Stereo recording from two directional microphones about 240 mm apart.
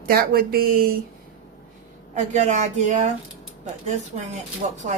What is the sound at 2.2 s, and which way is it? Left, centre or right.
Speech, right.